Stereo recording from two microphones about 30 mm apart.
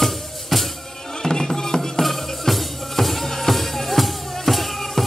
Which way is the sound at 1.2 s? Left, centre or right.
Centre.